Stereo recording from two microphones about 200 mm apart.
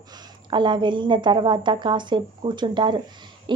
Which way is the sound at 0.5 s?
25° right (ahead or behind).